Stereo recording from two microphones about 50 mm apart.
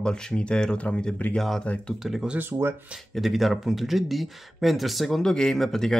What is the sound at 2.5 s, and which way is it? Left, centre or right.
Speech, right.